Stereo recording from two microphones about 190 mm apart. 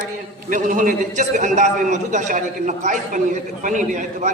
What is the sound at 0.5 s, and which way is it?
A man's voice, 45° right (ahead or behind).